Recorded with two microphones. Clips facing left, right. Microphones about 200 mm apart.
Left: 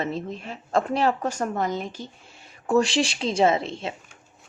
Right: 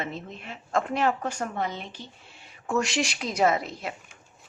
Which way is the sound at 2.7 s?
30° left (ahead or behind).